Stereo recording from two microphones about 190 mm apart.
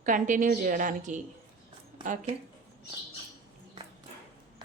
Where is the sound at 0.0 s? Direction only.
45° right (ahead or behind).